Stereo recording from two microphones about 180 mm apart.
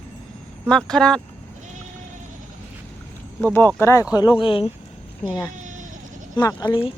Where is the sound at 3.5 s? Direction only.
15° left (ahead or behind).